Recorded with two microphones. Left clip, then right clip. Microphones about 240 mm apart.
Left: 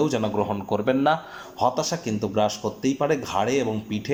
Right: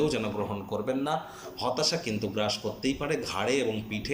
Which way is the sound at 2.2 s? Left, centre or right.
Left.